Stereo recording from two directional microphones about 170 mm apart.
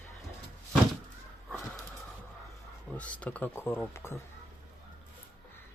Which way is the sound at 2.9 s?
10° left (ahead or behind).